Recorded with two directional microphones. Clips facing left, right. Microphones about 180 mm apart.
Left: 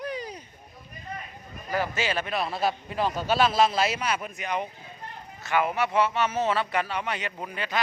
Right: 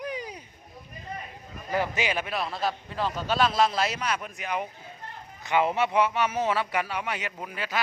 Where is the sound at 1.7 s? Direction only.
20° right (ahead or behind).